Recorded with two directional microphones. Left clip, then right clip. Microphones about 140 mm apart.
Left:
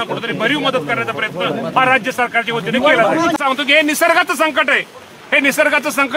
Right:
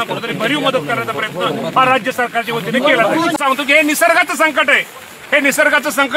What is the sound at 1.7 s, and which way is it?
Speech, 10° left (ahead or behind).